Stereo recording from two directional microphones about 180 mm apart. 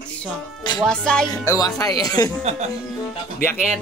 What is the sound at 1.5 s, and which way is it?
Speech, 20° left (ahead or behind).